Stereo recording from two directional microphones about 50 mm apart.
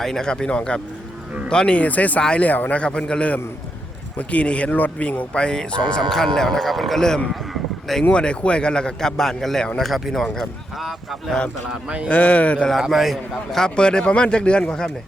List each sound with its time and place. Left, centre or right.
0.0 s a man's voice: centre
7.5 s a sound: centre
8.1 s a man's voice: left; by 11.2 s centre
12.0 s a man's voice: left
12.9 s a man's voice: centre
13.7 s speech: centre